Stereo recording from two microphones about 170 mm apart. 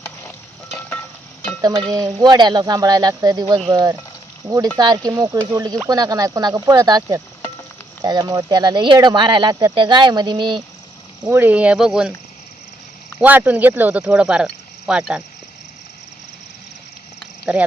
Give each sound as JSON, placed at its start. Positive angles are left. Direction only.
{"t": 0.0, "sound": "sizzle", "side_deg": 10}
{"t": 1.6, "sound": "speech", "side_deg": -25}
{"t": 11.3, "sound": "speech", "side_deg": -10}
{"t": 13.1, "sound": "speech", "side_deg": -10}
{"t": 17.5, "sound": "speech", "side_deg": -5}